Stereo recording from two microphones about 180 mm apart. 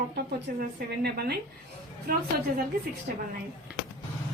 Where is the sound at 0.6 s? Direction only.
60° right (ahead or behind).